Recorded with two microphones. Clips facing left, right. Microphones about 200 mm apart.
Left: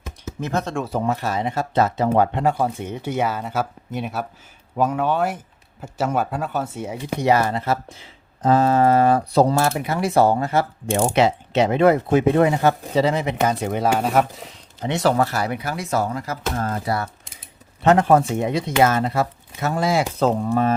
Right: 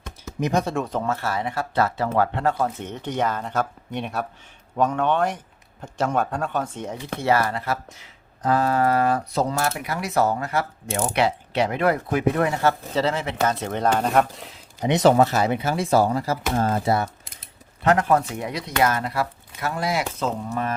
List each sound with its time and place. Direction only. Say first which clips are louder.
0.3 s speech: right 2 dB; 15° right (ahead or behind)
0.9 s speech: left 3 dB; 15° left (ahead or behind)
14.8 s speech: right 3 dB; 20° right (ahead or behind)
17.8 s speech: left 4 dB; 25° left (ahead or behind)